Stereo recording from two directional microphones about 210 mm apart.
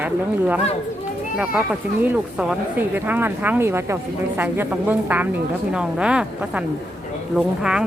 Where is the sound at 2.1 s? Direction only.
5° right (ahead or behind).